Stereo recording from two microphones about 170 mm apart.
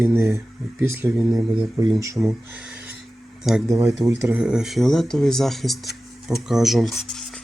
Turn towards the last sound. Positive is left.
turn(degrees=0)  # may be behind; listen again after turning